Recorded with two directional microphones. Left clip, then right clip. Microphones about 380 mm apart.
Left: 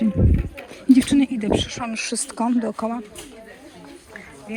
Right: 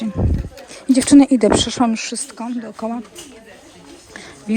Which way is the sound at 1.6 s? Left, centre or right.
Centre.